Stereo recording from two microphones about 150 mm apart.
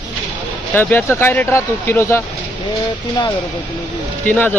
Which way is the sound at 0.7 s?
15° left (ahead or behind).